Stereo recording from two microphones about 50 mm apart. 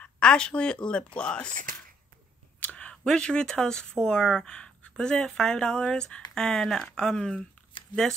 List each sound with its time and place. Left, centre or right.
0.0 s speech: centre
2.6 s a sound: left
3.2 s speech: centre